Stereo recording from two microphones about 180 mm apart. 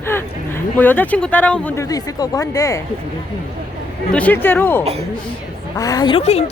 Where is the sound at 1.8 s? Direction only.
20° left (ahead or behind).